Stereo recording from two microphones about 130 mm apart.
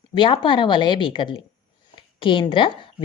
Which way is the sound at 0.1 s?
40° left (ahead or behind).